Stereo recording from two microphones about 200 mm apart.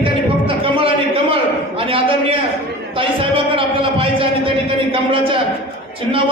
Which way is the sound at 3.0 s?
25° right (ahead or behind).